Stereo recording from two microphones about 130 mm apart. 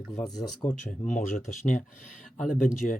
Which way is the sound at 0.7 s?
85° left.